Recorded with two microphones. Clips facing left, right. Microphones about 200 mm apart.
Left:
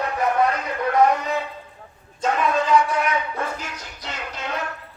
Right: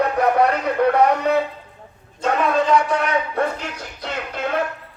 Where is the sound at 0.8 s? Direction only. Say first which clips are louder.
Right 7 dB; 65° right (ahead or behind).